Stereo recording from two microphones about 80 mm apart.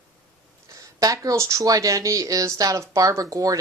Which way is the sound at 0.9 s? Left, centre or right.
Right.